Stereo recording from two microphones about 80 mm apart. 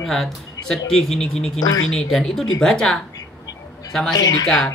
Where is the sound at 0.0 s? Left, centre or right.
Centre.